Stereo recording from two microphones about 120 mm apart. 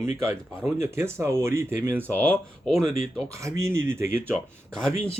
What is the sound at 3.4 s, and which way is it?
Speech, 25° right (ahead or behind).